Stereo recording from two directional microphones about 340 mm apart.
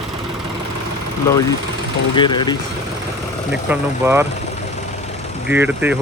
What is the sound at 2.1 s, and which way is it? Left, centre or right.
Speech, centre.